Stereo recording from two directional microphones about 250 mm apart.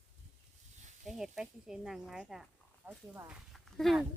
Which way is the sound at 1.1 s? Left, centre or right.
Centre.